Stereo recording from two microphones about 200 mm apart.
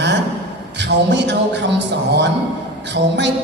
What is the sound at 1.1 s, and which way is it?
A man's voice, 60° right (ahead or behind).